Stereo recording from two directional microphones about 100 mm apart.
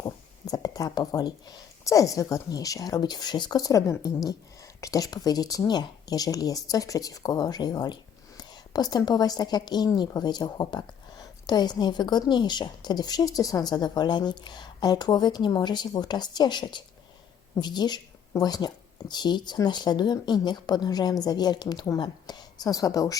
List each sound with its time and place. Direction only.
0.4 s a woman's voice: 40° left (ahead or behind)